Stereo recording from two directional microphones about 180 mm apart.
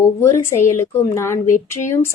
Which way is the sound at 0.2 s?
15° left (ahead or behind).